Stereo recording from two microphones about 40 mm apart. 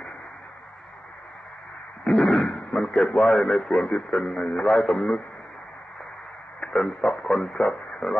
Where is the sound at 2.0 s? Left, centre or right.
Left.